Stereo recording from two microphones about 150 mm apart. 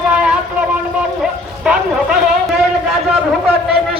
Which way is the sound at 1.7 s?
5° right (ahead or behind).